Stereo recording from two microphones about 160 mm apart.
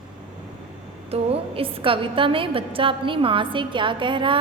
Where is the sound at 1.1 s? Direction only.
35° right (ahead or behind).